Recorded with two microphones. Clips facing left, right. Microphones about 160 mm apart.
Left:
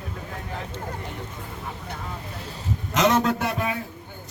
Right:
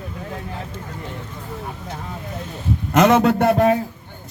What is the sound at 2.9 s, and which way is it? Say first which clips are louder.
Speech: right 6 dB; 60° right (ahead or behind).